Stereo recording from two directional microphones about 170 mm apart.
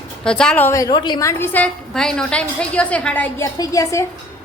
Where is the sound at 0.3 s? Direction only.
5° left (ahead or behind).